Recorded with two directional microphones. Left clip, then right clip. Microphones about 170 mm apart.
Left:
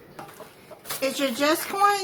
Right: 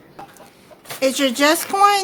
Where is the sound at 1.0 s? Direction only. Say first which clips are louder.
Right 8 dB; 55° right (ahead or behind).